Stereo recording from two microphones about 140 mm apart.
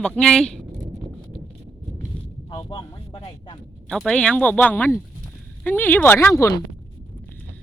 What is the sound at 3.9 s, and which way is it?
Speech, 5° left (ahead or behind).